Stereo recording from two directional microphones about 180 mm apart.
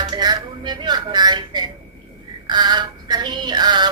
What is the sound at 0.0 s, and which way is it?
Music, 25° right (ahead or behind).